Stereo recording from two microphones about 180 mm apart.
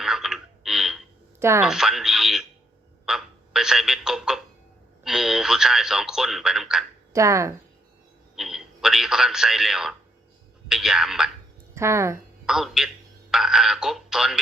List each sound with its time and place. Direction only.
0.0 s a sound: centre (ahead or behind)
1.4 s speech: 15° right (ahead or behind)
1.6 s speech: 5° right (ahead or behind)
7.1 s speech: 15° right (ahead or behind)
8.4 s a sound: centre (ahead or behind)
10.7 s speech: centre (ahead or behind)
11.7 s speech: 15° right (ahead or behind)
12.5 s speech: centre (ahead or behind)